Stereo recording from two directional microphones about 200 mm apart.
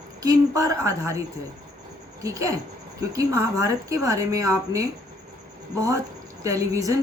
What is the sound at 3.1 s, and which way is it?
A woman's voice, 15° right (ahead or behind).